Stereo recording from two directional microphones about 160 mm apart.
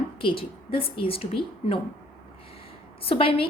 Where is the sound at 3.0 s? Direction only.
35° left (ahead or behind).